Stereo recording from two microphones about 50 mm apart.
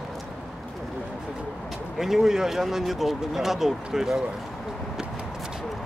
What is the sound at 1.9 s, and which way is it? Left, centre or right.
Speech, centre.